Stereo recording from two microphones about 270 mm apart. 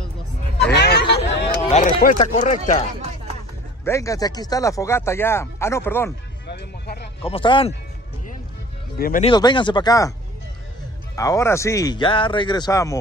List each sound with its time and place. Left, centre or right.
0.6 s hubbub: left
1.7 s speech: left
3.8 s speech: centre
6.4 s music: left
7.2 s speech: centre
8.9 s speech: left
9.3 s speech: centre
11.1 s speech: centre